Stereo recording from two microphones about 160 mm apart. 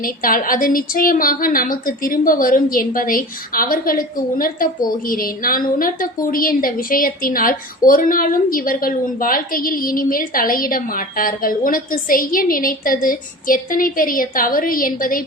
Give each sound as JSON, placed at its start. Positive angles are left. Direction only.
{"t": 0.0, "sound": "a woman's voice", "side_deg": 65}